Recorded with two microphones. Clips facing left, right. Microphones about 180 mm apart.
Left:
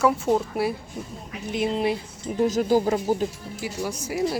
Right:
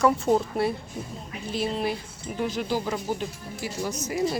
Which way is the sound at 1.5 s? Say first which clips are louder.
Left 4 dB; 20° left (ahead or behind).